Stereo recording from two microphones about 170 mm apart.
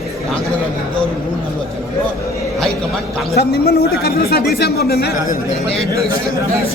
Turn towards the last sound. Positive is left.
turn(degrees=65)  # may be behind; listen again after turning